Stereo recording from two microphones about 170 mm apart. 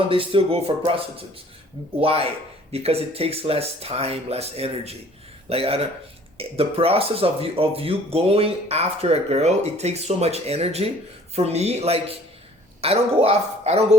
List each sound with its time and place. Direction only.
0.1 s speech: 30° right (ahead or behind)